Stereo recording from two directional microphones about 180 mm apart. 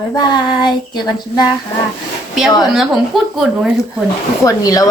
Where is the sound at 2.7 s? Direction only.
Centre (ahead or behind).